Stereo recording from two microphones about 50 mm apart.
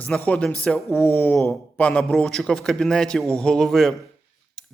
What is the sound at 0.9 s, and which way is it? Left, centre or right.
Speech, left.